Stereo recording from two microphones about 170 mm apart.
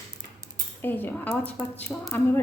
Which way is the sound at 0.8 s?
10° left (ahead or behind).